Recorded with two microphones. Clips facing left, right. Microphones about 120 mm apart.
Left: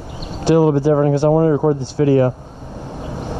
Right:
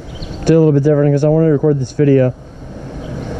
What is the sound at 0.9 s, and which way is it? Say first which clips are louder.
Speech: right 2 dB; 30° left (ahead or behind).